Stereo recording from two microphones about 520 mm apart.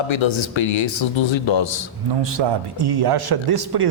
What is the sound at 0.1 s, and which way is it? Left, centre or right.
Speech, left.